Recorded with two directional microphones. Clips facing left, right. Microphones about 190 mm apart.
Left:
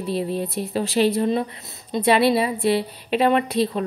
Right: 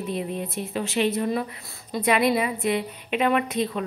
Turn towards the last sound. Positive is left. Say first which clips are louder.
# left 4 dB
turn(degrees=35)  # may be behind; listen again after turning